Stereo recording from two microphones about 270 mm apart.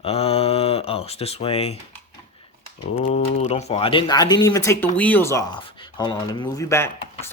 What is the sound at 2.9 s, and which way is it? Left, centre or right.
Speech, left.